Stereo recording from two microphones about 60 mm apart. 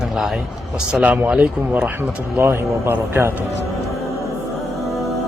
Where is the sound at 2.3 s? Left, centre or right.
Right.